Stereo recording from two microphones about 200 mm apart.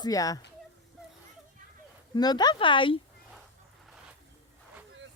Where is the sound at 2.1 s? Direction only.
20° left (ahead or behind).